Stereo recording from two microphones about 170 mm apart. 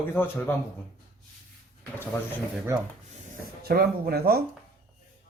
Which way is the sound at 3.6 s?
65° right (ahead or behind).